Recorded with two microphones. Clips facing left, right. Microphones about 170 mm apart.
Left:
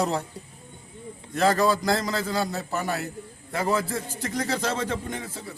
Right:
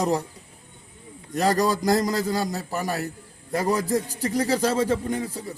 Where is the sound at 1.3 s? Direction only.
40° right (ahead or behind).